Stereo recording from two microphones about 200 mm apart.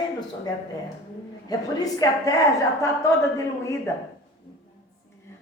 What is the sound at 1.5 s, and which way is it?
Speech, 20° left (ahead or behind).